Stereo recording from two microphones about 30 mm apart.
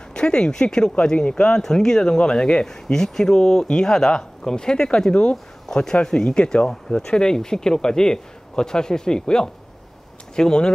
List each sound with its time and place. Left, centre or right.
0.1 s speech: left
1.6 s speech: centre; by 2.6 s left
2.6 s speech: centre
6.3 s speech: left
7.0 s speech: left